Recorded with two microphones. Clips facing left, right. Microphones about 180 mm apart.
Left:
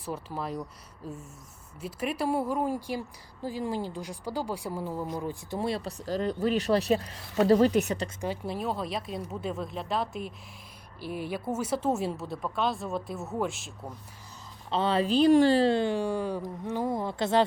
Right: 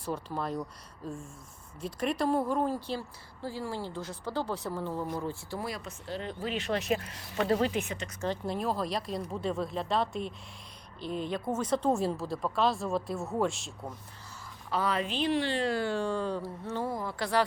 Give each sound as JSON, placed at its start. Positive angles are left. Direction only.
{"t": 0.0, "sound": "speech", "side_deg": 5}
{"t": 1.8, "sound": "a woman's voice", "side_deg": 5}
{"t": 8.2, "sound": "speech", "side_deg": 5}
{"t": 14.7, "sound": "speech", "side_deg": 25}
{"t": 15.7, "sound": "speech", "side_deg": 20}